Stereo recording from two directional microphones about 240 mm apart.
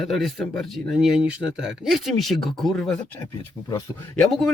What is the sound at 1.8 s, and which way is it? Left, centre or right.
Speech, centre.